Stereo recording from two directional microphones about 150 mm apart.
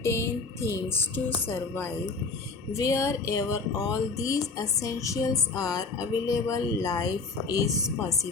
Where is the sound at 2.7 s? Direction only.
20° left (ahead or behind).